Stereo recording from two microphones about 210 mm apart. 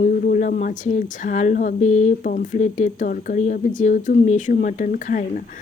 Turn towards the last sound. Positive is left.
turn(degrees=40)  # may be behind; listen again after turning